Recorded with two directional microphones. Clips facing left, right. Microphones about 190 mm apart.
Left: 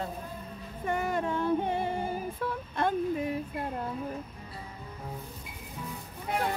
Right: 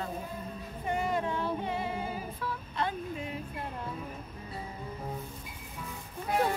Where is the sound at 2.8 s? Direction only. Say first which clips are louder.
Left 4 dB; 50° left (ahead or behind).